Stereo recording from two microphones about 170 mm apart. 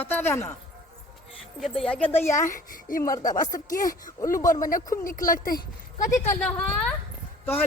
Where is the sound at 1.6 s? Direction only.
Centre (ahead or behind).